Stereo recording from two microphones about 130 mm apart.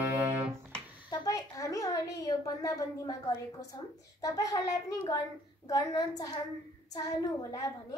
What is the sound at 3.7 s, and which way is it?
A child's voice, 30° left (ahead or behind).